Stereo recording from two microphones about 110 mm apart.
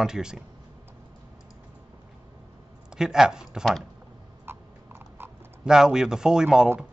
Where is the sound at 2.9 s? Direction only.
5° right (ahead or behind).